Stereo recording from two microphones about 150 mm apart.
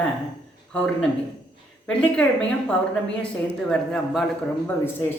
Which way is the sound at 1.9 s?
5° left (ahead or behind).